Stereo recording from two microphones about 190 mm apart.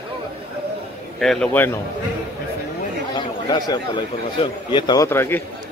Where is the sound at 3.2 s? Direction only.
20° left (ahead or behind).